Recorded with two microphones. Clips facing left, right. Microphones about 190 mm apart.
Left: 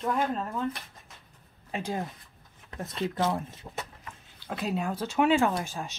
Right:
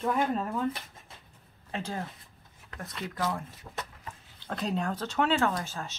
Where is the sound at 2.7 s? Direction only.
25° left (ahead or behind).